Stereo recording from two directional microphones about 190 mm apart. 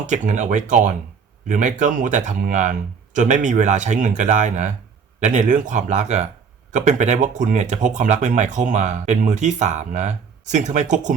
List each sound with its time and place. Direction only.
0.0 s speech: 40° right (ahead or behind)